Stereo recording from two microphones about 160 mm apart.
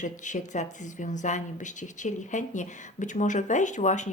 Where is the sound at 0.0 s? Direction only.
50° left (ahead or behind).